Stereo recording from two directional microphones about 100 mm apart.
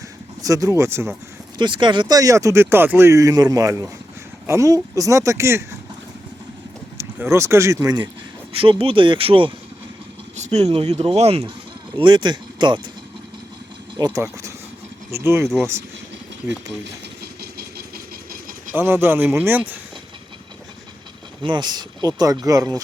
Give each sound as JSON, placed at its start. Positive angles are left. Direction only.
{"t": 0.4, "sound": "speech", "side_deg": -35}
{"t": 1.5, "sound": "speech", "side_deg": -50}
{"t": 2.1, "sound": "speech", "side_deg": -35}
{"t": 6.9, "sound": "speech", "side_deg": -30}
{"t": 8.5, "sound": "speech", "side_deg": -65}
{"t": 10.7, "sound": "speech", "side_deg": -75}
{"t": 11.9, "sound": "speech", "side_deg": -55}
{"t": 14.0, "sound": "speech", "side_deg": -40}
{"t": 15.1, "sound": "speech", "side_deg": -25}
{"t": 18.7, "sound": "speech", "side_deg": -25}
{"t": 21.4, "sound": "speech", "side_deg": -45}